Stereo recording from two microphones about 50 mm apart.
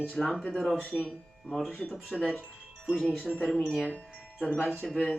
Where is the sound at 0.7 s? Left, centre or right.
Left.